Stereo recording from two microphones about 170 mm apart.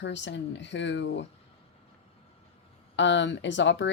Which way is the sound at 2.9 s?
90° left.